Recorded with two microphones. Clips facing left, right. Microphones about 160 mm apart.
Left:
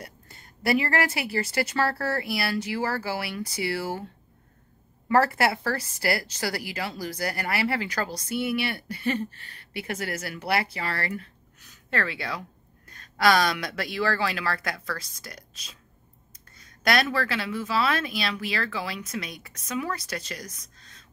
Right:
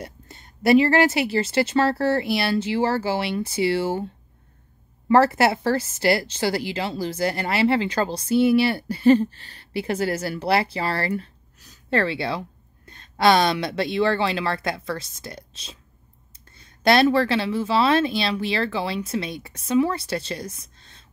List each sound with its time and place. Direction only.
0.0 s a woman's voice: 25° right (ahead or behind)
5.0 s a woman's voice: 25° right (ahead or behind)